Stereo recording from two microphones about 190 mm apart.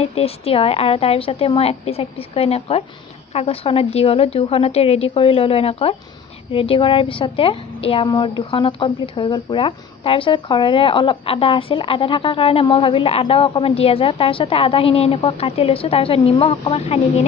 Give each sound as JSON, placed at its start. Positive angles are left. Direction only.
{"t": 0.0, "sound": "a woman's voice", "side_deg": 30}